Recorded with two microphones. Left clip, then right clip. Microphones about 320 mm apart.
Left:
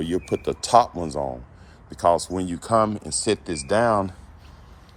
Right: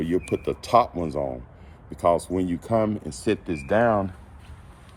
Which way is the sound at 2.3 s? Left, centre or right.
Centre.